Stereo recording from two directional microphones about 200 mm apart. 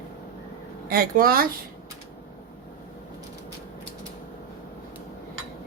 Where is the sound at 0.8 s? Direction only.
45° right (ahead or behind).